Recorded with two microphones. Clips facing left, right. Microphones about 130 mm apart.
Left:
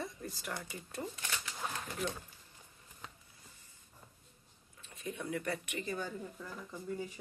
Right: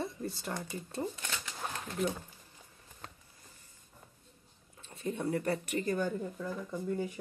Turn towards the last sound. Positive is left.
turn(degrees=-60)  # may be behind; listen again after turning